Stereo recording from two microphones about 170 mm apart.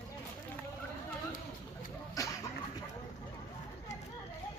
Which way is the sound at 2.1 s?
20° left (ahead or behind).